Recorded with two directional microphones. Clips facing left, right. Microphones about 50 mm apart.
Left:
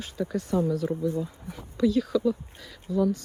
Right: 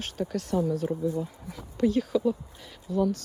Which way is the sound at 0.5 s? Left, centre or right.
Left.